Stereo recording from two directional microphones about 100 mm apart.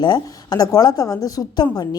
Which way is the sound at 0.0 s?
45° left (ahead or behind).